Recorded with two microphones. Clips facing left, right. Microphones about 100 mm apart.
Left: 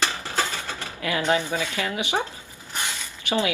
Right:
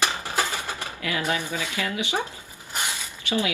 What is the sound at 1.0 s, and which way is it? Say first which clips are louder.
Speech: left 5 dB; 25° left (ahead or behind).